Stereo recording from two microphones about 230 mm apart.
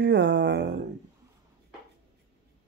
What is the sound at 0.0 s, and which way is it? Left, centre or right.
Speech, right.